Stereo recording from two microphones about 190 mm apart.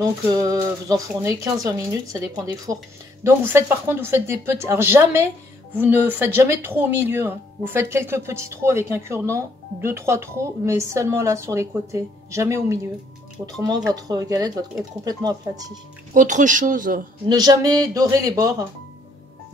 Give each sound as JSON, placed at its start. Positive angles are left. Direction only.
{"t": 0.3, "sound": "speech", "side_deg": -20}
{"t": 16.1, "sound": "speech", "side_deg": -40}
{"t": 17.3, "sound": "speech", "side_deg": -20}